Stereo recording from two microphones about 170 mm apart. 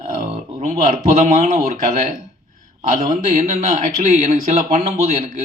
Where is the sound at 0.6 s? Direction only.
45° right (ahead or behind).